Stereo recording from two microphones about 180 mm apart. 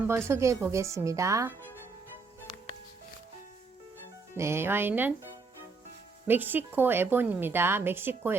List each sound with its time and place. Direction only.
0.1 s a woman's voice: 15° right (ahead or behind)
4.4 s a woman's voice: 15° right (ahead or behind)